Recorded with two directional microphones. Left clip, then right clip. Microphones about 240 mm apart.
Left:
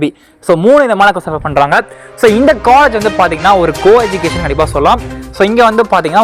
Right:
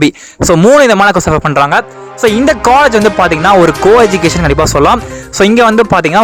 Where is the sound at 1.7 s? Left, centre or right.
Centre.